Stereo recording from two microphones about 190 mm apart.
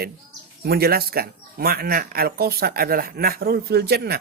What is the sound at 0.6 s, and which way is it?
Speech, 55° right (ahead or behind).